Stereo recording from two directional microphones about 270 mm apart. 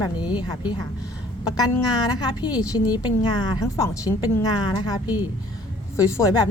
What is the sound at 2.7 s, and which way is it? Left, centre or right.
A woman's voice, centre.